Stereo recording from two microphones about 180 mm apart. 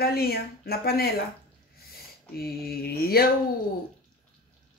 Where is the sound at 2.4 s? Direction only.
60° left (ahead or behind).